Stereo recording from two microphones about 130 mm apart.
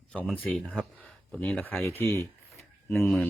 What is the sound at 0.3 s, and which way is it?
Speech, 10° left (ahead or behind).